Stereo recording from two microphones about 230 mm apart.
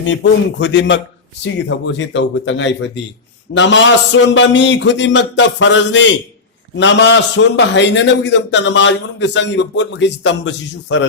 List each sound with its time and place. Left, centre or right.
0.0 s a man's voice: left